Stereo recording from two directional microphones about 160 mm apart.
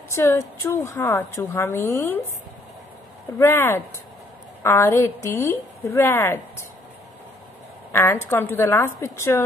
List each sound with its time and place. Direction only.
0.1 s a woman's voice: 15° left (ahead or behind)
3.3 s a woman's voice: 15° left (ahead or behind)
7.9 s a woman's voice: 15° left (ahead or behind)